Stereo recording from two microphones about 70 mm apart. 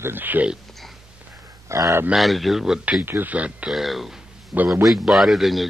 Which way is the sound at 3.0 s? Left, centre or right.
Right.